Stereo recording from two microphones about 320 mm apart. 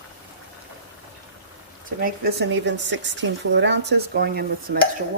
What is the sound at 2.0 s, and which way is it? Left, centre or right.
Speech, right.